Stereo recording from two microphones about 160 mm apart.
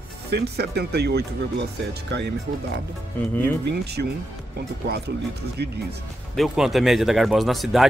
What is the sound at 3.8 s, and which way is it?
Speech, 90° right.